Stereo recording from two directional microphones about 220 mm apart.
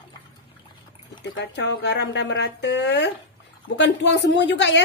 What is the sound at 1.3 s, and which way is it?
A woman's voice, 50° left (ahead or behind).